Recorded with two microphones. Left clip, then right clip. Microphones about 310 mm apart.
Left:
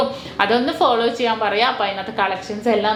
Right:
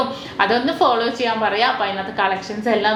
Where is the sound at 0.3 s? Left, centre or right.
Left.